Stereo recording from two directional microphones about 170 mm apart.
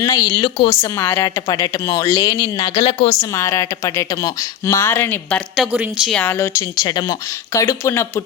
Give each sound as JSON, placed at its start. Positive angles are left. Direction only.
{"t": 0.0, "sound": "a woman's voice", "side_deg": 15}
{"t": 0.3, "sound": "a woman's voice", "side_deg": 30}
{"t": 0.8, "sound": "a woman's voice", "side_deg": 15}
{"t": 2.7, "sound": "a woman's voice", "side_deg": 35}
{"t": 3.2, "sound": "a woman's voice", "side_deg": 15}
{"t": 5.5, "sound": "speech", "side_deg": -5}
{"t": 6.1, "sound": "a woman's voice", "side_deg": 10}
{"t": 6.7, "sound": "a woman's voice", "side_deg": 25}